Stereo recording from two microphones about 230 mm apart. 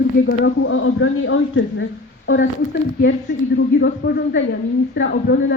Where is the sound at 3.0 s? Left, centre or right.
Left.